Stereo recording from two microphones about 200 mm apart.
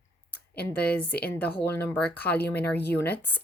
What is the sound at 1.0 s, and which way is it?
Speech, 50° left (ahead or behind).